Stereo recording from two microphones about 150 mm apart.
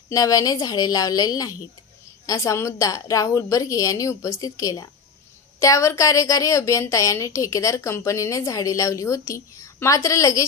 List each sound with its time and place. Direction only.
0.1 s a woman's voice: 25° left (ahead or behind)